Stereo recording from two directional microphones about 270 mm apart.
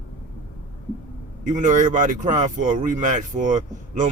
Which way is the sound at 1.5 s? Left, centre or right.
Right.